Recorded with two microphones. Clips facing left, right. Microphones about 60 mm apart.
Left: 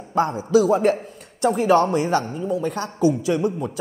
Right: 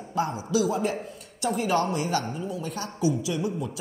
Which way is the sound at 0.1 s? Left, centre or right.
Left.